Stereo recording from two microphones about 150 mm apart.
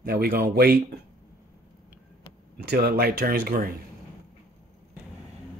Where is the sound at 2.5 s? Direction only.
90° right.